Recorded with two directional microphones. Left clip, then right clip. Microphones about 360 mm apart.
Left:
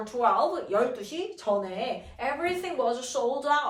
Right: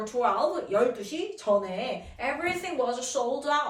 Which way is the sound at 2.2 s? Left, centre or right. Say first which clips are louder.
Even; centre.